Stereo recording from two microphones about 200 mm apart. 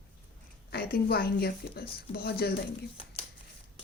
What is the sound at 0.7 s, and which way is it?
Speech, 50° left (ahead or behind).